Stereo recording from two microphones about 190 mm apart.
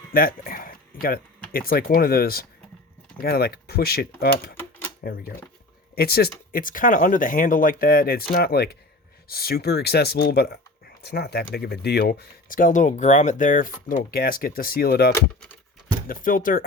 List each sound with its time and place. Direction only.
0.1 s speech: 50° left (ahead or behind)